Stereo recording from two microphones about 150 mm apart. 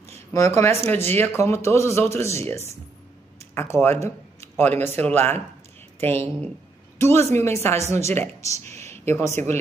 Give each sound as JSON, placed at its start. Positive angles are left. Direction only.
{"t": 0.3, "sound": "speech", "side_deg": 20}
{"t": 3.7, "sound": "a woman's voice", "side_deg": 15}